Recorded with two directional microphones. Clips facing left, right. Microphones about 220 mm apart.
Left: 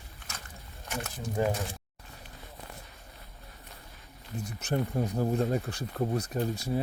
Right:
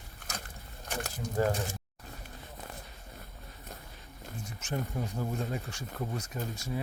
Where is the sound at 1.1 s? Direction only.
15° left (ahead or behind).